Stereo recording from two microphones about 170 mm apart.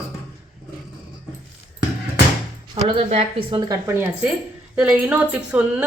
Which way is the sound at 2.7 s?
30° right (ahead or behind).